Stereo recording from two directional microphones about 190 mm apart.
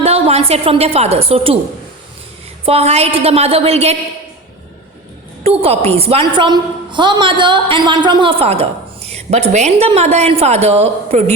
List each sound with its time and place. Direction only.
0.0 s a woman's voice: 35° right (ahead or behind)
2.6 s a woman's voice: 35° right (ahead or behind)
5.4 s a woman's voice: 30° right (ahead or behind)